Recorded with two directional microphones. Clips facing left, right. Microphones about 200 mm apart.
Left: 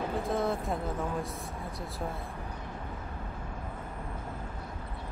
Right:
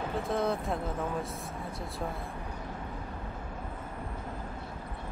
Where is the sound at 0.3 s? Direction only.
Centre (ahead or behind).